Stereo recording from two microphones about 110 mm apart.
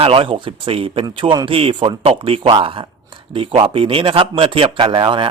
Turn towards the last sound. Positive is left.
turn(degrees=-50)  # may be behind; listen again after turning